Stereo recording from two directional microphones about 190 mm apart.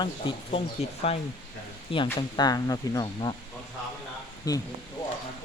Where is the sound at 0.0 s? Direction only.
30° left (ahead or behind).